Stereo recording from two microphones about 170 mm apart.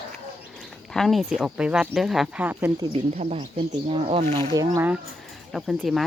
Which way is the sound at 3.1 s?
40° right (ahead or behind).